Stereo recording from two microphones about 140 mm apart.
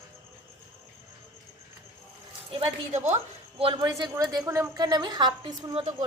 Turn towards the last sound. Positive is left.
turn(degrees=-30)  # may be behind; listen again after turning